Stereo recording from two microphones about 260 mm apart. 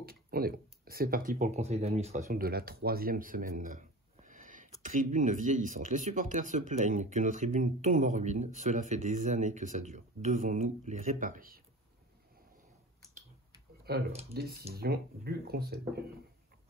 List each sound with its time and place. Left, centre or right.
0.0 s speech: right
13.9 s speech: right